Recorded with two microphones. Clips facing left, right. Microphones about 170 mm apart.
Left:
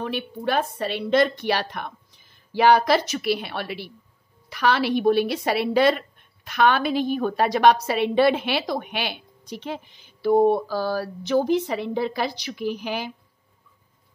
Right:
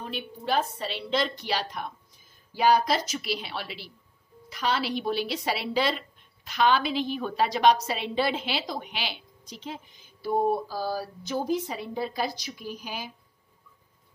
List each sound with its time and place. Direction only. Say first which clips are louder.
0.0 s a woman's voice: left 8 dB; 65° left (ahead or behind)